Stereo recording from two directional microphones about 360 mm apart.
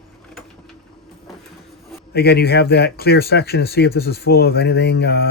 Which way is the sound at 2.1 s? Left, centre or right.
Left.